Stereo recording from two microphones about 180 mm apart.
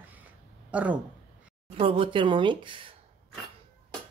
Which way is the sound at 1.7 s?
30° right (ahead or behind).